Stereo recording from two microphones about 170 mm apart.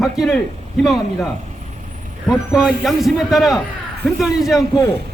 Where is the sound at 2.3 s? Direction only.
5° right (ahead or behind).